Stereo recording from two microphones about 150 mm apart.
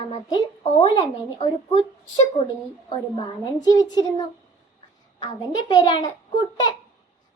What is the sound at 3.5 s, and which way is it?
Speech, 25° left (ahead or behind).